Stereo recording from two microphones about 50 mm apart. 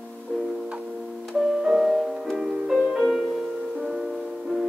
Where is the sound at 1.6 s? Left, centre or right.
Centre.